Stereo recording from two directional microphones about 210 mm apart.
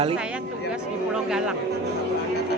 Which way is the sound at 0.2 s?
5° right (ahead or behind).